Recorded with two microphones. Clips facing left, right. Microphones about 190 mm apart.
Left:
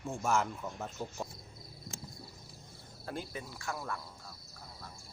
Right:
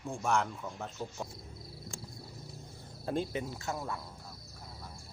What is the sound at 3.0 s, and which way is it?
Cricket, 25° right (ahead or behind).